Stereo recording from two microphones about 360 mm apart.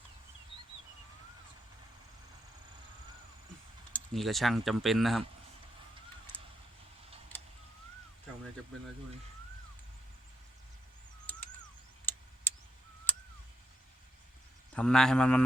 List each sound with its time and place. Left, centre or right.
3.9 s speech: centre
6.3 s vehicle: centre
12.1 s tick: centre
12.5 s a sound: centre
14.7 s speech: centre